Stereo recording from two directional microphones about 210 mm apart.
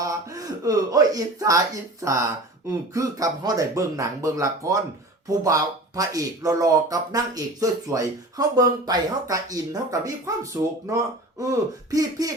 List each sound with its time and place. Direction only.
0.0 s speech: 15° right (ahead or behind)